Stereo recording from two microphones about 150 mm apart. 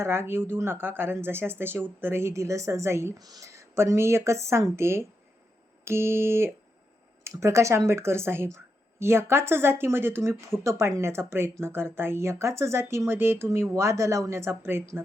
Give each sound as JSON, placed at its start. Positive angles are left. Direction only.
{"t": 0.0, "sound": "speech", "side_deg": -15}